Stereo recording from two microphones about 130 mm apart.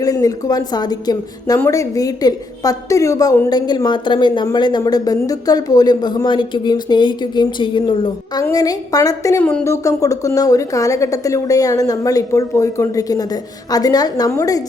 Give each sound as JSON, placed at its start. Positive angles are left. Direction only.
{"t": 0.0, "sound": "speech", "side_deg": 30}
{"t": 1.5, "sound": "speech", "side_deg": 20}
{"t": 9.4, "sound": "speech", "side_deg": 10}
{"t": 9.6, "sound": "speech", "side_deg": 25}